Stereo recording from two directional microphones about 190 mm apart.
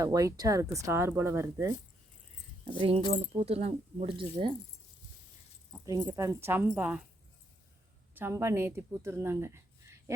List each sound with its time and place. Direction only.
0.0 s speech: 20° right (ahead or behind)
3.1 s speech: 30° right (ahead or behind)
5.7 s speech: 15° right (ahead or behind)
8.1 s speech: 15° right (ahead or behind)